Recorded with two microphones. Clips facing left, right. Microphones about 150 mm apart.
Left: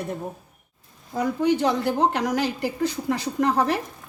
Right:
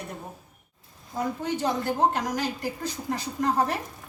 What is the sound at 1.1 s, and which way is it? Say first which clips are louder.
A woman's voice: left 7 dB; 70° left (ahead or behind).